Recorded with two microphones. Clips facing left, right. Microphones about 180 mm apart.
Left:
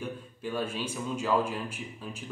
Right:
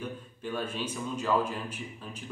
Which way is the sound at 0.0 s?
10° left (ahead or behind).